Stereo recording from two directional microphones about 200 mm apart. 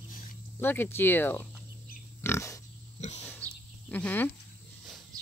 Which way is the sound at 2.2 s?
15° left (ahead or behind).